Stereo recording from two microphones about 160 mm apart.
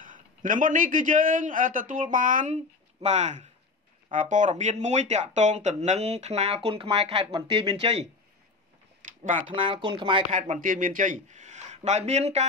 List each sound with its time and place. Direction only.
0.0 s a man's voice: 55° right (ahead or behind); by 8.1 s 40° right (ahead or behind)
9.2 s speech: 50° right (ahead or behind)
9.5 s speech: 30° right (ahead or behind)
10.3 s a man's voice: 50° right (ahead or behind)